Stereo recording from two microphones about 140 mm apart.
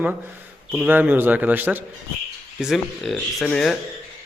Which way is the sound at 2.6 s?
Centre (ahead or behind).